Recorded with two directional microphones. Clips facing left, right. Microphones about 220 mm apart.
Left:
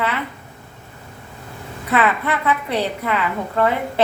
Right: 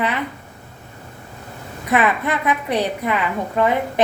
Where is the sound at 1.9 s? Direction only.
15° right (ahead or behind).